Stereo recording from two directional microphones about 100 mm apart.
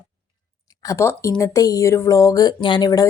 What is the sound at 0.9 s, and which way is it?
A woman's voice, 30° left (ahead or behind).